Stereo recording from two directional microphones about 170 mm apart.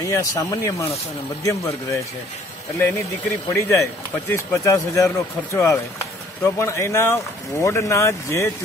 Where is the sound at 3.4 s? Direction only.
15° left (ahead or behind).